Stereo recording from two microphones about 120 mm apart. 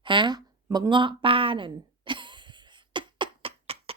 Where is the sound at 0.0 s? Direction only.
40° right (ahead or behind).